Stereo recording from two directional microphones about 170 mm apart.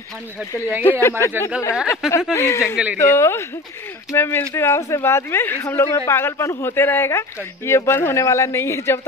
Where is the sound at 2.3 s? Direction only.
15° left (ahead or behind).